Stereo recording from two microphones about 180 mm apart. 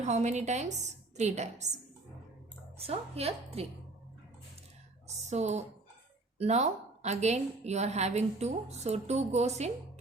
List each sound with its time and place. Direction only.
0.0 s a woman's voice: 40° right (ahead or behind)
2.8 s a woman's voice: 35° right (ahead or behind)
5.0 s a woman's voice: 40° right (ahead or behind)